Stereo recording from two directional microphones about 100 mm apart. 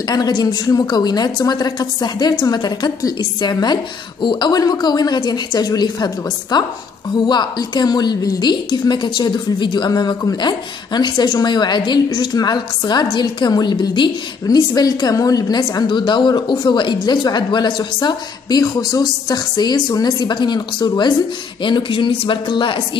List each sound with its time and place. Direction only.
0.1 s a woman's voice: 40° left (ahead or behind)
21.6 s speech: 55° left (ahead or behind)